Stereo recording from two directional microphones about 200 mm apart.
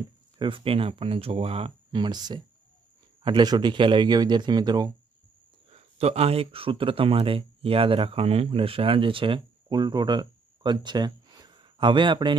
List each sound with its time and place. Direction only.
0.4 s speech: 25° right (ahead or behind)
5.7 s speech: 30° right (ahead or behind)